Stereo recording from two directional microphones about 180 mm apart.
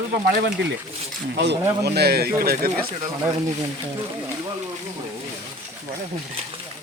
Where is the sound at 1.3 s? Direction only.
70° right (ahead or behind).